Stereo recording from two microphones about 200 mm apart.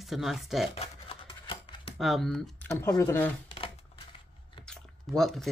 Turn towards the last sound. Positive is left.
turn(degrees=0)  # may be behind; listen again after turning